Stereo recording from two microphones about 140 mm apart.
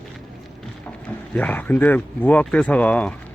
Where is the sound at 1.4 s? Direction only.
10° left (ahead or behind).